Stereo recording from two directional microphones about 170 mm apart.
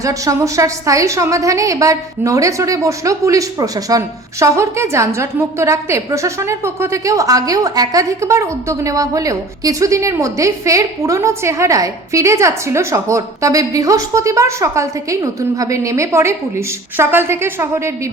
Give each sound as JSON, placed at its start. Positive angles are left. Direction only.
{"t": 0.0, "sound": "a woman's voice", "side_deg": -20}